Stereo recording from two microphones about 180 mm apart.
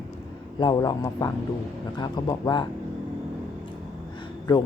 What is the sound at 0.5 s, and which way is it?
Speech, 25° left (ahead or behind).